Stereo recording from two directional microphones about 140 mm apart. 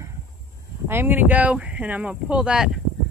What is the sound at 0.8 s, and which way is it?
Speech, 15° right (ahead or behind).